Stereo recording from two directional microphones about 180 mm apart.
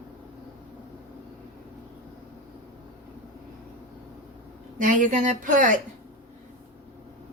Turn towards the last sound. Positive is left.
turn(degrees=-45)  # may be behind; listen again after turning